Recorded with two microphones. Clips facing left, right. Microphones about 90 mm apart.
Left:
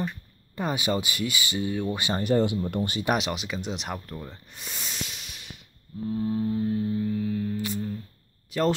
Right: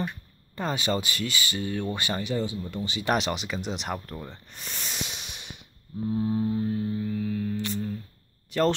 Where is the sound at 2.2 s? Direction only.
60° left (ahead or behind).